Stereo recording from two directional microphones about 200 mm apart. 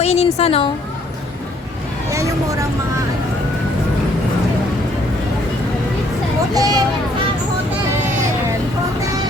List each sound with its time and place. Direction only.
0.0 s a woman's voice: 30° left (ahead or behind)
2.1 s vehicle: 15° right (ahead or behind)
6.5 s speech: 20° right (ahead or behind)